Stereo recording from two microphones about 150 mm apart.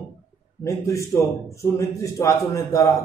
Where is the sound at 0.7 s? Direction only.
20° left (ahead or behind).